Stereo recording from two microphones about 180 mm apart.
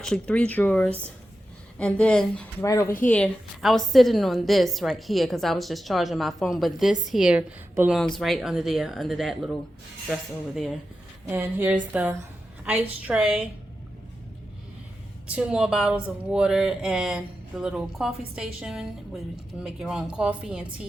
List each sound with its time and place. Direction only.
0.0 s speech: 5° left (ahead or behind)
2.6 s speech: 20° left (ahead or behind)
3.0 s a woman's voice: 5° left (ahead or behind)
11.3 s a sound: 10° right (ahead or behind)
12.6 s a woman's voice: 5° right (ahead or behind)
15.3 s a woman's voice: 5° right (ahead or behind)